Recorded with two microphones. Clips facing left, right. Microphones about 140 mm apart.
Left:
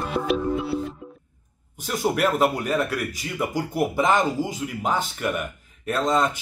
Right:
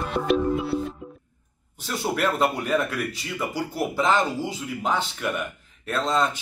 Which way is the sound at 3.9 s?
15° left (ahead or behind).